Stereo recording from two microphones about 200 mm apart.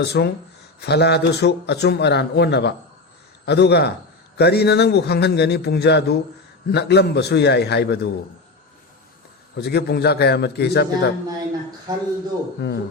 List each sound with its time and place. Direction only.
0.0 s speech: 55° left (ahead or behind)
9.6 s speech: 55° left (ahead or behind)
11.9 s a man's voice: 20° right (ahead or behind)
12.5 s speech: 55° left (ahead or behind)